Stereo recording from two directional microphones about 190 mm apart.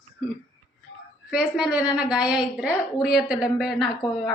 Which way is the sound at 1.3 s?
5° right (ahead or behind).